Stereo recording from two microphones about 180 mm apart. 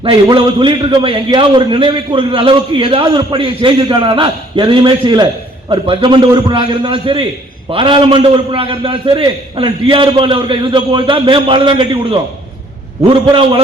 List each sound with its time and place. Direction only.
0.0 s a man's voice: 30° right (ahead or behind)